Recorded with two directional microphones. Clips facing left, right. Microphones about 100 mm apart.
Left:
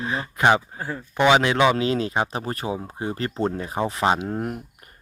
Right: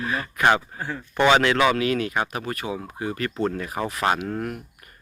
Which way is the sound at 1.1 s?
10° left (ahead or behind).